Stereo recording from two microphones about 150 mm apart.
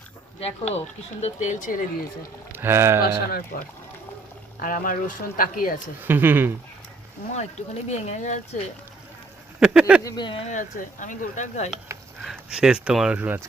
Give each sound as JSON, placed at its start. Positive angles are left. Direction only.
{"t": 0.3, "sound": "speech", "side_deg": 45}
{"t": 1.2, "sound": "speech", "side_deg": 55}
{"t": 2.5, "sound": "speech", "side_deg": -15}
{"t": 3.0, "sound": "speech", "side_deg": 85}
{"t": 4.6, "sound": "speech", "side_deg": 65}
{"t": 6.0, "sound": "speech", "side_deg": -15}
{"t": 7.3, "sound": "speech", "side_deg": 50}
{"t": 9.6, "sound": "speech", "side_deg": -5}
{"t": 10.0, "sound": "speech", "side_deg": 25}
{"t": 10.4, "sound": "speech", "side_deg": 60}
{"t": 12.2, "sound": "speech", "side_deg": -5}